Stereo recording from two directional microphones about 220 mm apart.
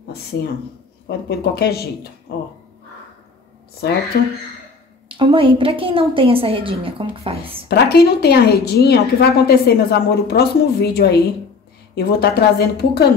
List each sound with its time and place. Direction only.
1.0 s a woman's voice: 45° left (ahead or behind)
4.1 s a woman's voice: 45° left (ahead or behind)
5.0 s a woman's voice: 25° right (ahead or behind)
7.6 s a woman's voice: 45° left (ahead or behind)